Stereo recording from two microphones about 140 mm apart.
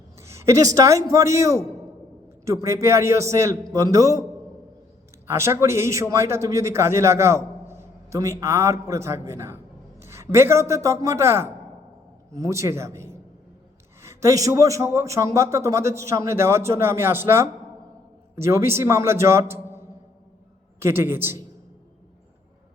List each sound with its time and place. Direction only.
0.2 s a man's voice: 20° right (ahead or behind)
5.3 s a man's voice: 20° right (ahead or behind)
20.8 s a woman's voice: 15° right (ahead or behind)